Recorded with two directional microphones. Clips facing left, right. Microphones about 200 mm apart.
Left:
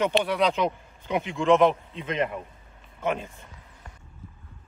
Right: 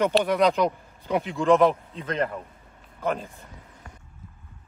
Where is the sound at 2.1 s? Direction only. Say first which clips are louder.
Even; 10° left (ahead or behind).